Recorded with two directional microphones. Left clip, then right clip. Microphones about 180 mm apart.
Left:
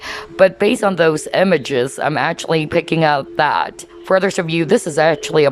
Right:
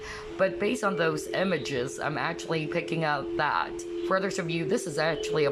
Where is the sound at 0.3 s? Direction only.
45° left (ahead or behind).